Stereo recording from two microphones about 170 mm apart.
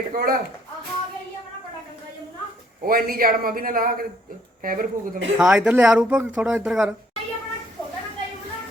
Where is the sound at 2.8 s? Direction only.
60° right (ahead or behind).